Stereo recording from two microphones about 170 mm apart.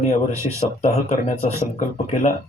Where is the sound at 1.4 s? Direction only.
40° left (ahead or behind).